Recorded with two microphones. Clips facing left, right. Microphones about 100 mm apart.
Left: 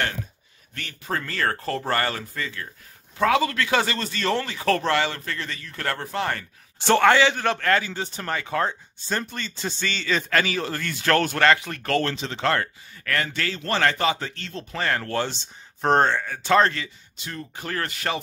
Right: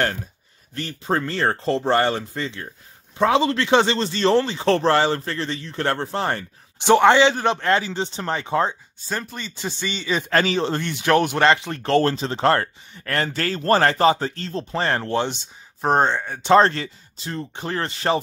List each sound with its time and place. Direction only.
0.7 s a man's voice: 30° right (ahead or behind)
6.8 s a man's voice: 20° right (ahead or behind)
9.1 s speech: 10° right (ahead or behind)
10.3 s a man's voice: 30° right (ahead or behind)
15.8 s speech: 10° right (ahead or behind)
16.1 s a man's voice: 25° right (ahead or behind)